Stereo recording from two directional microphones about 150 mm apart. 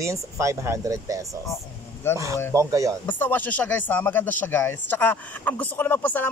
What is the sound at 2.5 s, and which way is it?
Speech, 20° right (ahead or behind).